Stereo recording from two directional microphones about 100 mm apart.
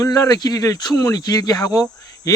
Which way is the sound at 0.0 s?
35° left (ahead or behind).